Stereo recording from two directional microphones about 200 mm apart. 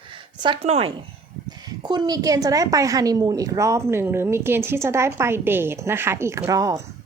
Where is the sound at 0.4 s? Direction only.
30° right (ahead or behind).